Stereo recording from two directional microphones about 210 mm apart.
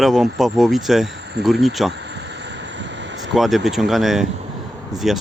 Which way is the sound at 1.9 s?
55° right (ahead or behind).